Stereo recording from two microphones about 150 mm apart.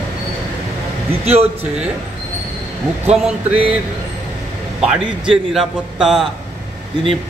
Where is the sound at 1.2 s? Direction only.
45° right (ahead or behind).